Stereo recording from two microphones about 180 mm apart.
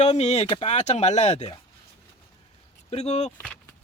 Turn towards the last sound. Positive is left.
turn(degrees=35)  # may be behind; listen again after turning